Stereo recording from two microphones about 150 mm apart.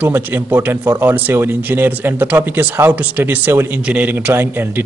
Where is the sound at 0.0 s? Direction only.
10° right (ahead or behind).